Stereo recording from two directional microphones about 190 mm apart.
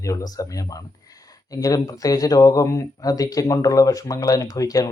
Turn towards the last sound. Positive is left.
turn(degrees=20)  # may be behind; listen again after turning